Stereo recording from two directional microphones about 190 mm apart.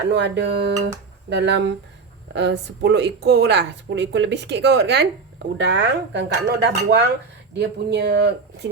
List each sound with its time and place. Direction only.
0.1 s speech: 70° right (ahead or behind)